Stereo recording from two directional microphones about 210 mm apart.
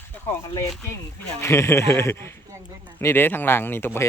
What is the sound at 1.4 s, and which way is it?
Speech, 10° left (ahead or behind).